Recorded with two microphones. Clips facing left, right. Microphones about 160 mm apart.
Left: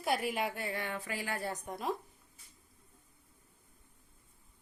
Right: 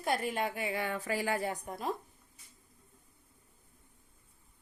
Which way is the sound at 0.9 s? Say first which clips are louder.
Right 5 dB; 40° right (ahead or behind).